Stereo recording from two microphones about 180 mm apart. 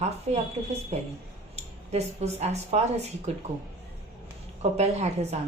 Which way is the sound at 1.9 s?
35° right (ahead or behind).